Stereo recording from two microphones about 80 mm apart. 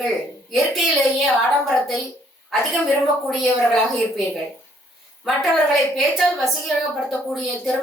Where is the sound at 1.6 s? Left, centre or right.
Centre.